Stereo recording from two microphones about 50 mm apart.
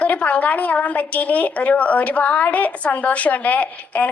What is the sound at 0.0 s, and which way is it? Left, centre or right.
A woman's voice, left.